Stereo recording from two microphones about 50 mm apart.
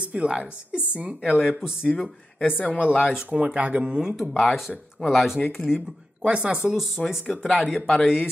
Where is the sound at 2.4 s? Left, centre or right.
Left.